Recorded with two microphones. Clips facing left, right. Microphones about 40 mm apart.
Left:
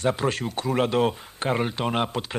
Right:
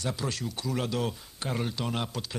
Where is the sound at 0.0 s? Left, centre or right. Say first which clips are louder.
Left 9 dB; left.